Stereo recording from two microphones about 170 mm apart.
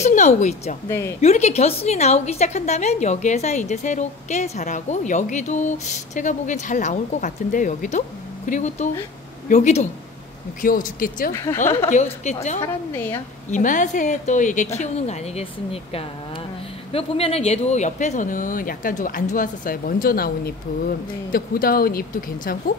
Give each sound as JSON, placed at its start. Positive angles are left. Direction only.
{"t": 0.0, "sound": "a woman's voice", "side_deg": 40}
{"t": 0.8, "sound": "a woman's voice", "side_deg": 15}
{"t": 1.2, "sound": "a woman's voice", "side_deg": 40}
{"t": 10.6, "sound": "speech", "side_deg": 55}
{"t": 11.3, "sound": "a woman's voice", "side_deg": 20}
{"t": 11.9, "sound": "a woman's voice", "side_deg": 45}
{"t": 12.6, "sound": "a woman's voice", "side_deg": 15}
{"t": 13.5, "sound": "a woman's voice", "side_deg": 50}